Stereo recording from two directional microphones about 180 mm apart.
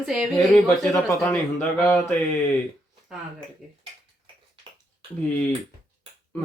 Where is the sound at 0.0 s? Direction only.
Centre (ahead or behind).